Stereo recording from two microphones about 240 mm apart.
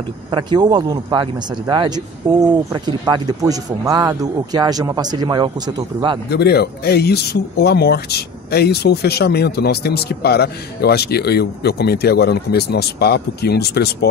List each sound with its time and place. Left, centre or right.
0.3 s speech: centre
6.2 s speech: left